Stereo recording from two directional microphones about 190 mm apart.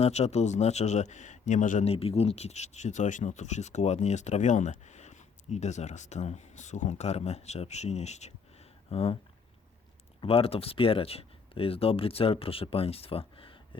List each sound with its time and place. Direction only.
0.0 s a man's voice: 35° left (ahead or behind)
10.2 s speech: 30° left (ahead or behind)